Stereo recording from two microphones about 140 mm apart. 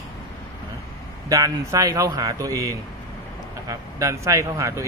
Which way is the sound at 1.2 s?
25° right (ahead or behind).